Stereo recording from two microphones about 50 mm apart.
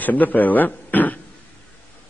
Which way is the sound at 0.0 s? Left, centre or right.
Left.